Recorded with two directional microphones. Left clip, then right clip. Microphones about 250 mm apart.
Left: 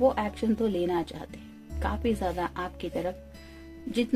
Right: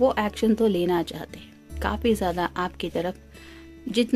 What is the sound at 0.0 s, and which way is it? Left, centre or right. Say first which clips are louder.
Speech: right 3 dB; right.